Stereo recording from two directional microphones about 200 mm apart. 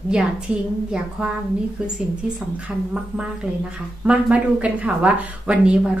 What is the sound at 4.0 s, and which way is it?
Speech, 5° right (ahead or behind).